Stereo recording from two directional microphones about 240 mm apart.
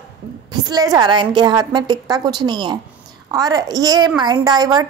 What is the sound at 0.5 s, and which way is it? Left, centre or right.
A woman's voice, centre.